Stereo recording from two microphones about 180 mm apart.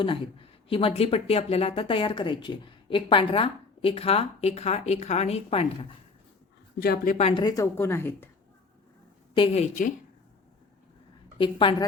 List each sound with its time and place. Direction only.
0.0 s a woman's voice: 30° left (ahead or behind)
6.7 s speech: 60° left (ahead or behind)
7.3 s a woman's voice: 25° left (ahead or behind)
9.3 s a woman's voice: 30° left (ahead or behind)
11.3 s a woman's voice: 30° left (ahead or behind)